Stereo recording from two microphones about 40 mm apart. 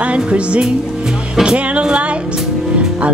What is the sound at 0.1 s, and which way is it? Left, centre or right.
Music, right.